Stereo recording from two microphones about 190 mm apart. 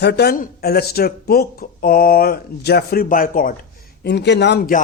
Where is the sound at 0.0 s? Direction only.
60° left (ahead or behind).